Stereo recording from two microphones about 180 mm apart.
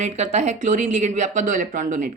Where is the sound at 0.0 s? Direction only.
40° right (ahead or behind).